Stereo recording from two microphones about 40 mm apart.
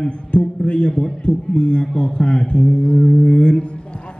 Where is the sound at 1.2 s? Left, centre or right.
Left.